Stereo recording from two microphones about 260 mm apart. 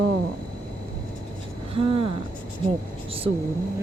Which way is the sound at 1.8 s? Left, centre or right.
Right.